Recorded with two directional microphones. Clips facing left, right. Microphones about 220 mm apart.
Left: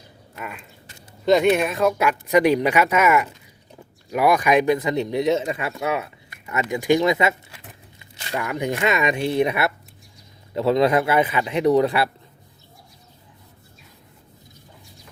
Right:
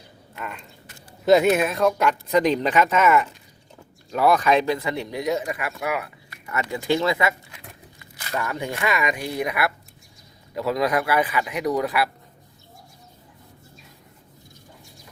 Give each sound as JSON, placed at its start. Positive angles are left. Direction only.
{"t": 0.3, "sound": "speech", "side_deg": 5}
{"t": 1.2, "sound": "speech", "side_deg": -5}